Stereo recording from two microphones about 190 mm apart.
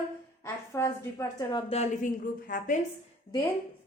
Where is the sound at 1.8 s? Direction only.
45° left (ahead or behind).